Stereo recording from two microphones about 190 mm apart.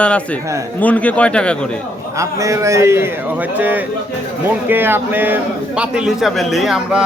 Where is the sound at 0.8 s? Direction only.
5° left (ahead or behind).